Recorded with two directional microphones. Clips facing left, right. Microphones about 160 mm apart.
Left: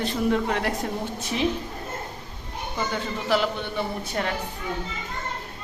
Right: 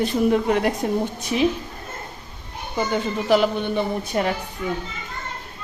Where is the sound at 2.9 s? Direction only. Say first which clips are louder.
Right 6 dB; 15° right (ahead or behind).